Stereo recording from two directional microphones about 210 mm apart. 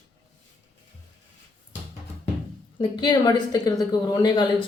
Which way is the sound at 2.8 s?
20° left (ahead or behind).